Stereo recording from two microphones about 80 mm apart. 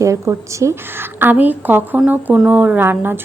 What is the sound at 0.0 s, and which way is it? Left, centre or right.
A woman's voice, right.